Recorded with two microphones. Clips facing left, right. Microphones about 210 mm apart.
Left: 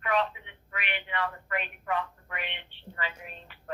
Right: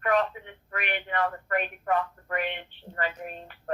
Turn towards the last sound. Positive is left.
turn(degrees=-45)  # may be behind; listen again after turning